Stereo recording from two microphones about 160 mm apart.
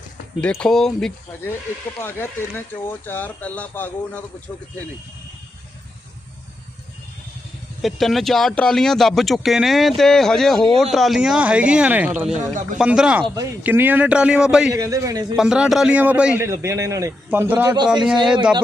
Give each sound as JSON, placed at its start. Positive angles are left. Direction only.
{"t": 0.4, "sound": "speech", "side_deg": 5}
{"t": 7.8, "sound": "speech", "side_deg": 0}
{"t": 13.2, "sound": "a man's voice", "side_deg": -25}
{"t": 13.7, "sound": "speech", "side_deg": -10}
{"t": 14.7, "sound": "a man's voice", "side_deg": -20}
{"t": 15.4, "sound": "speech", "side_deg": -5}
{"t": 16.5, "sound": "speech", "side_deg": -20}
{"t": 17.8, "sound": "speech", "side_deg": -5}